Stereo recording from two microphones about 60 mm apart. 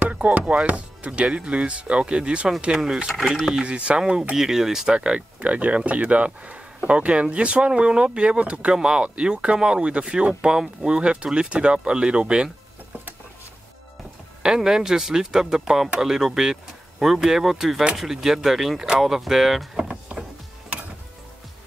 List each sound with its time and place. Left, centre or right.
0.0 s speech: right; by 3.5 s centre
3.5 s speech: centre
14.4 s speech: centre